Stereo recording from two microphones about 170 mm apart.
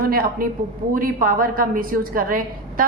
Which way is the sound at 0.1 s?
60° right (ahead or behind).